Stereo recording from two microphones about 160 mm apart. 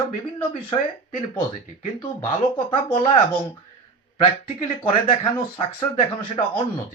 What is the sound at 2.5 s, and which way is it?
Speech, 35° left (ahead or behind).